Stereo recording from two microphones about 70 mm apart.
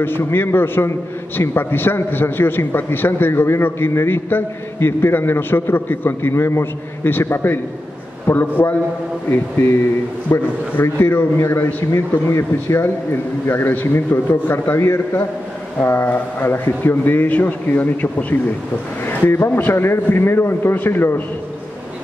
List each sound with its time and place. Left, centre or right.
0.0 s a man's voice: left
10.3 s a man's voice: left
10.8 s a man's voice: left